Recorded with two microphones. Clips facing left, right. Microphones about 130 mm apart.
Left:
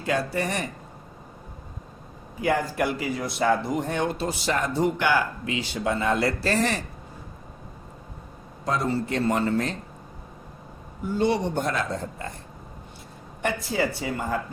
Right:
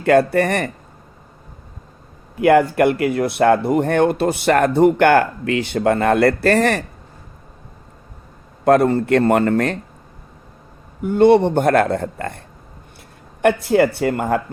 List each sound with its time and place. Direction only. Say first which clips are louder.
0.0 s speech: right 12 dB; 60° right (ahead or behind)
2.3 s speech: right 11 dB; 65° right (ahead or behind)
8.6 s speech: right 12 dB; 60° right (ahead or behind)
11.0 s speech: right 11 dB; 60° right (ahead or behind)
13.4 s speech: right 11 dB; 60° right (ahead or behind)